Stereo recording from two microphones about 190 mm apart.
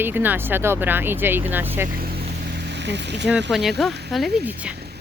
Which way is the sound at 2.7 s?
65° right (ahead or behind).